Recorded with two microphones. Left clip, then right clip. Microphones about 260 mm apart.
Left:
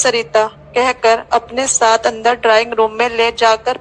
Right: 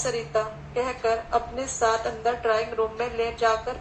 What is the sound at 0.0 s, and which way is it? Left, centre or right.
A woman's voice, left.